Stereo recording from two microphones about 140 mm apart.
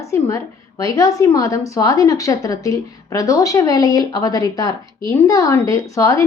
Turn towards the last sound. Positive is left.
turn(degrees=25)  # may be behind; listen again after turning